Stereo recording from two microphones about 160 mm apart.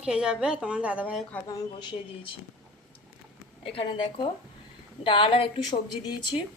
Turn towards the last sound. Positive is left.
turn(degrees=30)  # may be behind; listen again after turning